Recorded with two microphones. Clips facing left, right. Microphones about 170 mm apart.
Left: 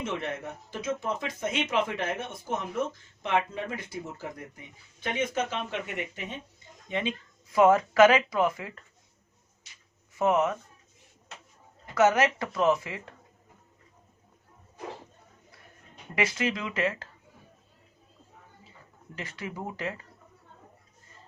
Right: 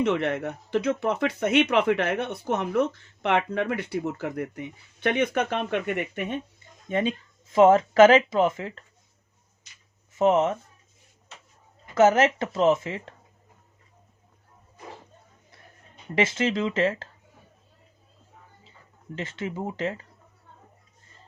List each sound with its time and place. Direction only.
0.0 s speech: 65° right (ahead or behind)
6.8 s speech: 45° right (ahead or behind)
7.5 s speech: 25° right (ahead or behind)
10.2 s speech: 25° right (ahead or behind)
11.9 s speech: 25° right (ahead or behind)
16.1 s speech: 25° right (ahead or behind)
19.1 s speech: 25° right (ahead or behind)